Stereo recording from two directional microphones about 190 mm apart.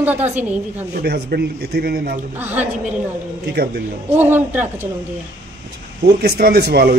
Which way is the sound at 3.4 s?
55° right (ahead or behind).